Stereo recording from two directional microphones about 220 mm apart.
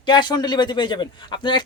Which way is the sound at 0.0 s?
20° left (ahead or behind).